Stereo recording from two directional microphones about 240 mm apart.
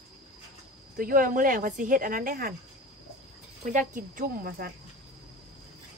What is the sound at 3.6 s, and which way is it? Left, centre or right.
Speech, right.